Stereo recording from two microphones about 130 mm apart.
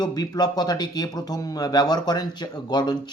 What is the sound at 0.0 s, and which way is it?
Speech, 30° left (ahead or behind).